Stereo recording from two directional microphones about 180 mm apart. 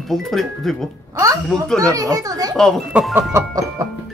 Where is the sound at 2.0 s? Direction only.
20° right (ahead or behind).